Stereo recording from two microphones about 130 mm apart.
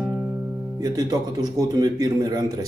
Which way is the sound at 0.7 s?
30° right (ahead or behind).